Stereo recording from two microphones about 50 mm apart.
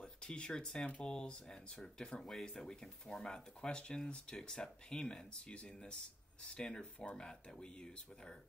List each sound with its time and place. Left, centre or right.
0.0 s speech: centre